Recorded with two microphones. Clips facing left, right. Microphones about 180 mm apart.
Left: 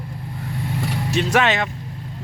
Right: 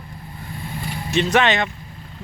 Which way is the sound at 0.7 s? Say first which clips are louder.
Left 4 dB; 75° left (ahead or behind).